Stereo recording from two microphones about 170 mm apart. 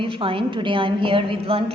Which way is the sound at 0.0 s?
30° right (ahead or behind).